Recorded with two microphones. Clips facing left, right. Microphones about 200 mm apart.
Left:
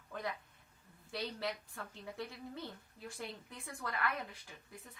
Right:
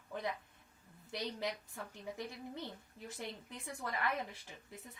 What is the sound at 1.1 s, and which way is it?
Speech, 20° right (ahead or behind).